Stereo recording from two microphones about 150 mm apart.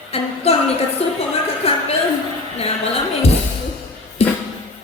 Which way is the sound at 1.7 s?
40° left (ahead or behind).